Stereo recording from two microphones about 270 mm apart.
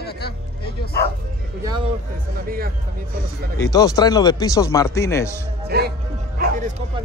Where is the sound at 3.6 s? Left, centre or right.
Centre.